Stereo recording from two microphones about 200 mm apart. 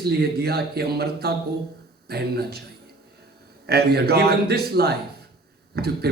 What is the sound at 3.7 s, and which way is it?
A man's voice, 55° right (ahead or behind).